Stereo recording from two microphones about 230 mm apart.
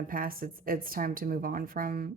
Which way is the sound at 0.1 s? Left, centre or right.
Right.